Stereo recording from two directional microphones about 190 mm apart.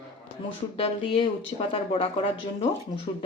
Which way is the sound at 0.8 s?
30° left (ahead or behind).